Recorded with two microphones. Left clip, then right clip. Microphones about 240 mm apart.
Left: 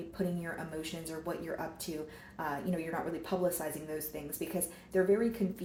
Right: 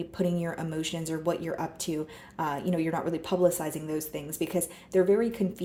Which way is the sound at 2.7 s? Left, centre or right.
Right.